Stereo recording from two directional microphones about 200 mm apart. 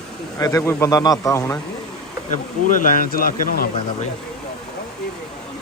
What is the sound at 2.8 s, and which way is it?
Speech, 45° left (ahead or behind).